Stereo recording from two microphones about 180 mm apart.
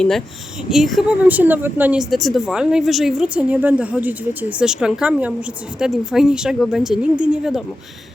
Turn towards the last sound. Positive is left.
turn(degrees=0)  # may be behind; listen again after turning